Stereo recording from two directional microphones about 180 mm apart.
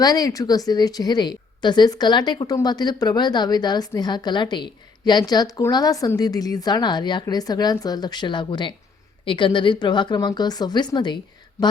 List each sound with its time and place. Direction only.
0.0 s a woman's voice: 20° left (ahead or behind)